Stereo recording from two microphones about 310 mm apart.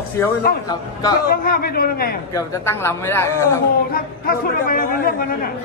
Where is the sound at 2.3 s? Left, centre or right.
Centre.